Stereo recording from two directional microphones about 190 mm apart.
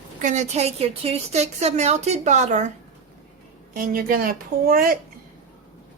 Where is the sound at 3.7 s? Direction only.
50° right (ahead or behind).